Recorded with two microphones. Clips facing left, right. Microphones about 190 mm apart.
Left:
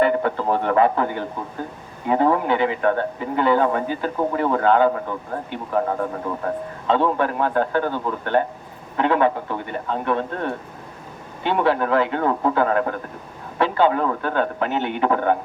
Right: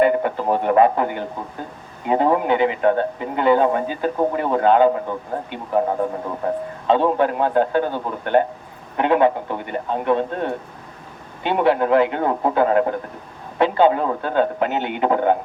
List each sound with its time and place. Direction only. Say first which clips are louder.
0.0 s a man's voice: right 2 dB; 20° right (ahead or behind)